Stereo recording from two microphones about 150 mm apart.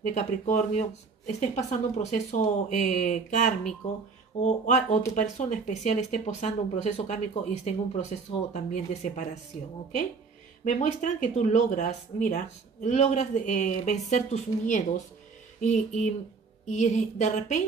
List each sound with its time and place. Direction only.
0.0 s speech: 55° left (ahead or behind)
4.6 s speech: 50° left (ahead or behind)
10.6 s speech: 55° left (ahead or behind)